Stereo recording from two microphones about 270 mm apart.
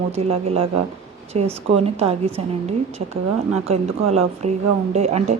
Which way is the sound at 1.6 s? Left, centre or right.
Right.